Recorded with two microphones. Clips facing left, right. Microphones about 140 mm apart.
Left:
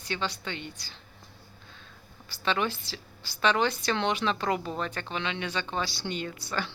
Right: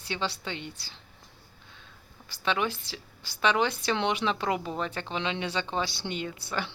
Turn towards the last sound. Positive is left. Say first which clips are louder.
# even
turn(degrees=-20)  # may be behind; listen again after turning